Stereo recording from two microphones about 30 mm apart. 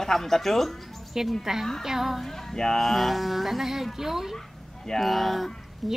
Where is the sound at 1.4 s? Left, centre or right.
Centre.